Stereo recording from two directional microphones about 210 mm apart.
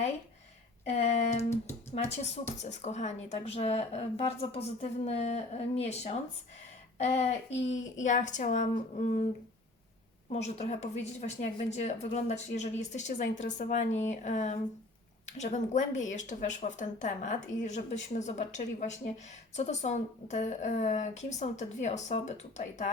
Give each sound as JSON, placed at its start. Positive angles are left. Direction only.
{"t": 0.9, "sound": "a woman's voice", "side_deg": 30}
{"t": 10.3, "sound": "a woman's voice", "side_deg": 30}